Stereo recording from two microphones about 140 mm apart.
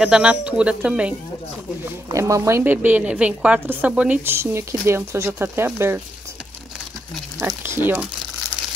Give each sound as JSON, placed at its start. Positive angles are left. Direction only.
{"t": 0.0, "sound": "a woman's voice", "side_deg": -5}
{"t": 2.0, "sound": "a woman's voice", "side_deg": -25}
{"t": 7.3, "sound": "a woman's voice", "side_deg": -20}